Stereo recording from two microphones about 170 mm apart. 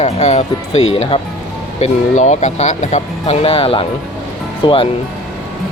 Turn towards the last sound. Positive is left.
turn(degrees=30)  # may be behind; listen again after turning